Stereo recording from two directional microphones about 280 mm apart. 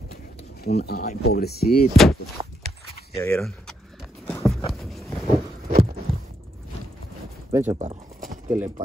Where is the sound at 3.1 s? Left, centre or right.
Centre.